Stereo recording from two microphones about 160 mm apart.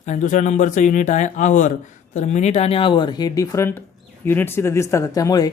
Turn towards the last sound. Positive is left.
turn(degrees=20)  # may be behind; listen again after turning